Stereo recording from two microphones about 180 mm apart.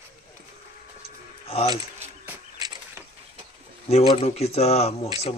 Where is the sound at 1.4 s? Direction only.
35° left (ahead or behind).